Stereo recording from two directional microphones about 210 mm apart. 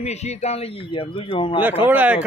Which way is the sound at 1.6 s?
10° right (ahead or behind).